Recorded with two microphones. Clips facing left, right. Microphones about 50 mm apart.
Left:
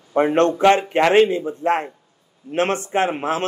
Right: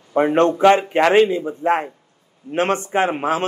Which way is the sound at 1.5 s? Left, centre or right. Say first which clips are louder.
Right 1 dB; right.